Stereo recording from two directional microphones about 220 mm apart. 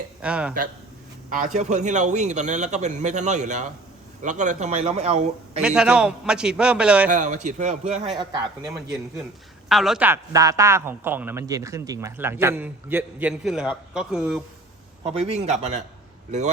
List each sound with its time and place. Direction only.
0.2 s a man's voice: 5° right (ahead or behind)
1.5 s a man's voice: 30° right (ahead or behind)
5.6 s a man's voice: 5° right (ahead or behind)
7.1 s a man's voice: 35° right (ahead or behind)
8.1 s speech: 20° right (ahead or behind)
8.6 s a man's voice: centre (ahead or behind)
15.4 s a man's voice: 30° right (ahead or behind)